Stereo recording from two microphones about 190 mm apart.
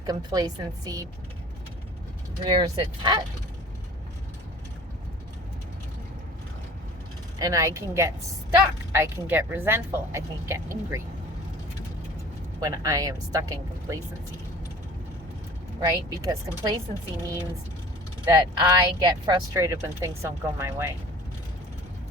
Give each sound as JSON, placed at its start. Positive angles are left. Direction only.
{"t": 0.0, "sound": "speech", "side_deg": -20}
{"t": 2.4, "sound": "speech", "side_deg": -25}
{"t": 7.3, "sound": "speech", "side_deg": -20}
{"t": 12.5, "sound": "speech", "side_deg": -20}
{"t": 15.8, "sound": "speech", "side_deg": -20}
{"t": 18.3, "sound": "speech", "side_deg": -20}